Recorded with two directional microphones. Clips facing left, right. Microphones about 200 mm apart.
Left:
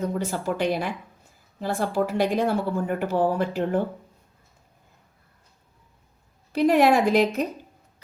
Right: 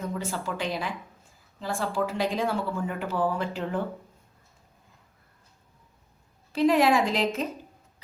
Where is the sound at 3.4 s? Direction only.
60° left (ahead or behind).